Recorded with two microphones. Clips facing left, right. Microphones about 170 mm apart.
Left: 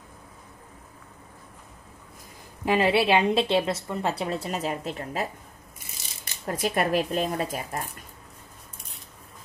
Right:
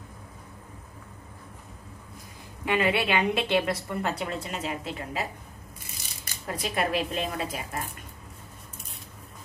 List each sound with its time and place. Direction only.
2.6 s a woman's voice: 35° left (ahead or behind)
6.4 s speech: 45° left (ahead or behind)